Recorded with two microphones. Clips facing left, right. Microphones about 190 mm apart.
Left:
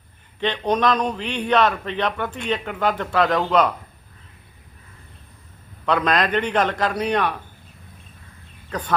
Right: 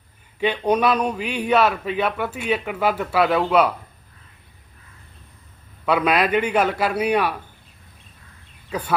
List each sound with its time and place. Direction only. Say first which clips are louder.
0.3 s speech: right 2 dB; 10° right (ahead or behind)
5.8 s speech: right 1 dB; 10° right (ahead or behind)
8.7 s speech: right 1 dB; 10° right (ahead or behind)